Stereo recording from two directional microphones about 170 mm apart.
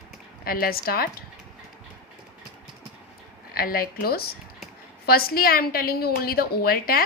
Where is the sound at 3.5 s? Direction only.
60° left (ahead or behind).